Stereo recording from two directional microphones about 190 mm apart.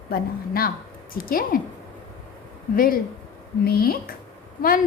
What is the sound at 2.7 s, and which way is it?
Speech, 50° left (ahead or behind).